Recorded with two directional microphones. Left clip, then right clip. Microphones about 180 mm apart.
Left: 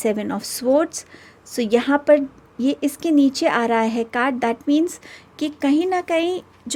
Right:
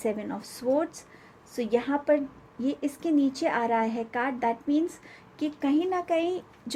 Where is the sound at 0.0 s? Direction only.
65° left (ahead or behind); by 6.4 s 45° left (ahead or behind).